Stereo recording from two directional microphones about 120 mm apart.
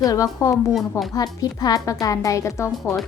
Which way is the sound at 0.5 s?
Centre (ahead or behind).